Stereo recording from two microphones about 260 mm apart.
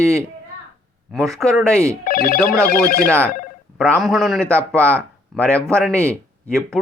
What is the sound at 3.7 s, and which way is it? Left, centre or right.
Speech, centre.